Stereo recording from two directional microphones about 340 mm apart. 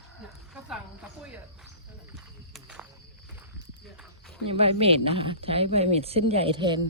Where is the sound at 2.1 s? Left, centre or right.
Centre.